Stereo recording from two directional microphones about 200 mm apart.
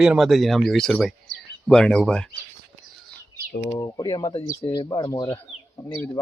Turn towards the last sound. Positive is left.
turn(degrees=15)  # may be behind; listen again after turning